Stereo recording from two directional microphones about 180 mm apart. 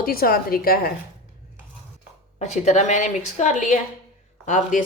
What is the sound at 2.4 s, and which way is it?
A woman's voice, 40° left (ahead or behind).